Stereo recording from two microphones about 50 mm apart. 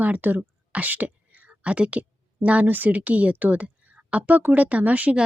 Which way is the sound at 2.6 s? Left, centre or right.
Right.